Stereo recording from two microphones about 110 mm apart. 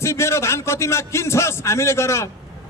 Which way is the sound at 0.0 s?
25° left (ahead or behind).